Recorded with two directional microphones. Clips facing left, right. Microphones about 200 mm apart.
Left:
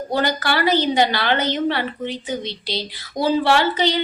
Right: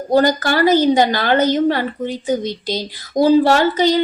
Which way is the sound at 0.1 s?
45° right (ahead or behind).